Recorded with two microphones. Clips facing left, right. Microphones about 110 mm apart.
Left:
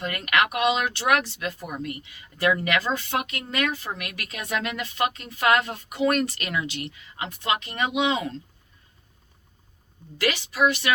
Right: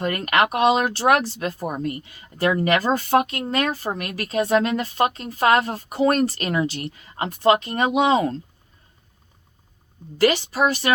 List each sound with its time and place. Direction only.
0.0 s speech: 40° right (ahead or behind)
10.2 s speech: 35° right (ahead or behind)